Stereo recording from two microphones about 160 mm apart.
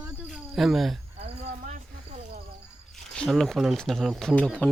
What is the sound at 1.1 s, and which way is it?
Speech, 40° right (ahead or behind).